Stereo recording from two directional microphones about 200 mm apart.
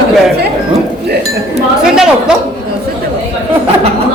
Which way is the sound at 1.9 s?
5° right (ahead or behind).